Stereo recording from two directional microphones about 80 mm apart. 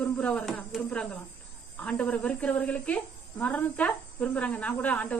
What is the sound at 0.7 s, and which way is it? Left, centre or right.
Speech, centre.